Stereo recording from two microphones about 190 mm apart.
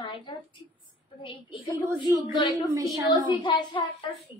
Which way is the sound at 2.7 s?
15° right (ahead or behind).